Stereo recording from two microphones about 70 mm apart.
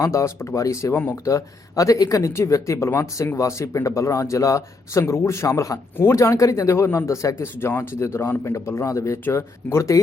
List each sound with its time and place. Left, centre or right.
0.0 s speech: left
7.6 s speech: left